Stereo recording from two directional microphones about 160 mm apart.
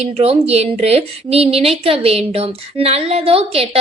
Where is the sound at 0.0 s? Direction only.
40° right (ahead or behind).